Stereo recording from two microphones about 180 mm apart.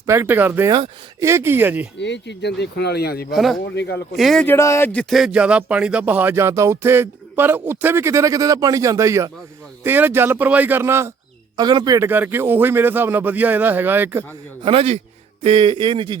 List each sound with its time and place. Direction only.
0.0 s speech: 15° right (ahead or behind)
2.0 s speech: 80° left; by 3.3 s 60° left (ahead or behind)
3.3 s speech: centre (ahead or behind)
3.8 s speech: 70° left (ahead or behind)
4.2 s speech: centre (ahead or behind)
4.4 s speech: 15° left (ahead or behind); by 14.3 s 10° right (ahead or behind)
14.6 s a man's voice: 30° right (ahead or behind)